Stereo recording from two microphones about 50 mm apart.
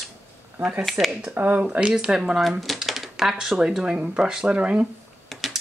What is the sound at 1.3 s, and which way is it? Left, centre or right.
Speech, right.